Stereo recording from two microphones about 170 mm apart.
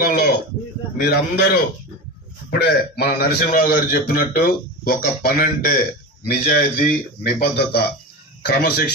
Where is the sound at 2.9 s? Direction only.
65° left (ahead or behind).